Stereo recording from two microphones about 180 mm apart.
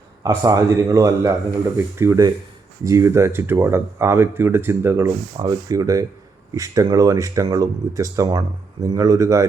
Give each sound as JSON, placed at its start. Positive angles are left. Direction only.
{"t": 0.2, "sound": "speech", "side_deg": -20}